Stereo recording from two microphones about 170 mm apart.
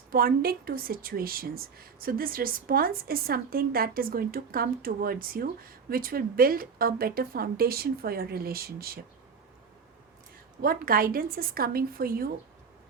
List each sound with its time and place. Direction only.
0.1 s a woman's voice: 60° right (ahead or behind)
10.6 s a woman's voice: 60° right (ahead or behind)